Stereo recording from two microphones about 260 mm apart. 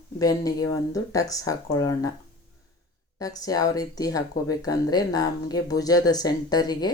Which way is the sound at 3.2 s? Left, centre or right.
Centre.